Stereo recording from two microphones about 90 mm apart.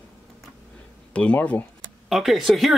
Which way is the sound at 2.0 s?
Centre (ahead or behind).